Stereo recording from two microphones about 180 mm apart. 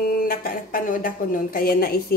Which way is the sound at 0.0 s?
55° left (ahead or behind).